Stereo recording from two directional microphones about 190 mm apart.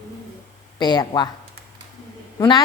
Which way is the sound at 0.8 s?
20° left (ahead or behind).